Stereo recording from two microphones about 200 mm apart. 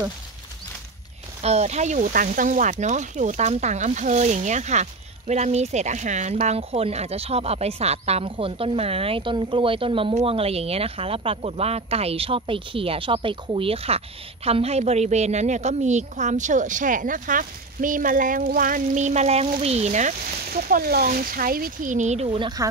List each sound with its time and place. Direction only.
1.4 s speech: 35° right (ahead or behind)